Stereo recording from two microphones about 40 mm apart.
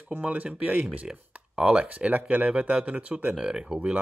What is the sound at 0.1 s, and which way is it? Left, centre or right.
Speech, right.